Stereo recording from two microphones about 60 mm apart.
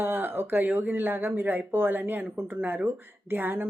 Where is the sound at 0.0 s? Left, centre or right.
Right.